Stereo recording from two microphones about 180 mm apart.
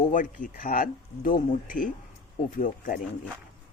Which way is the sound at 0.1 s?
45° left (ahead or behind).